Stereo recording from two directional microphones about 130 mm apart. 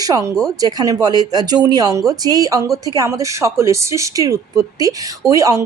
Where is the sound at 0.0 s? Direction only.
25° right (ahead or behind).